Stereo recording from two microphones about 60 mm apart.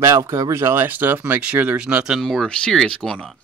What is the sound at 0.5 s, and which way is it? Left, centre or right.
Speech, right.